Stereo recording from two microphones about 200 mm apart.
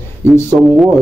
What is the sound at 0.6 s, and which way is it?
Speech, centre (ahead or behind).